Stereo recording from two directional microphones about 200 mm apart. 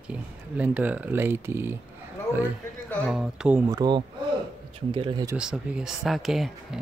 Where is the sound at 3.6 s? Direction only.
20° right (ahead or behind).